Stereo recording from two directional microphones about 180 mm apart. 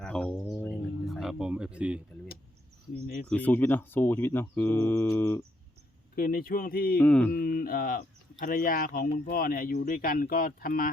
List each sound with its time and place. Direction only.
0.0 s a sound: 5° left (ahead or behind)
3.2 s speech: 10° left (ahead or behind)
6.1 s speech: 55° left (ahead or behind)
7.0 s speech: 5° left (ahead or behind)
7.3 s speech: 55° left (ahead or behind)